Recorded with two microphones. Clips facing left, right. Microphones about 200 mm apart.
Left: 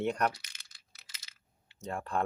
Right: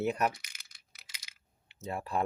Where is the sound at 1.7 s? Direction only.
5° right (ahead or behind).